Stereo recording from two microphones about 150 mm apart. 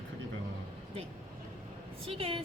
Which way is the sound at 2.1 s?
40° right (ahead or behind).